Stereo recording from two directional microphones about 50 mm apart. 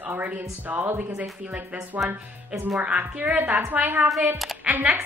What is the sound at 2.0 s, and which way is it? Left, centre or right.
A woman's voice, right.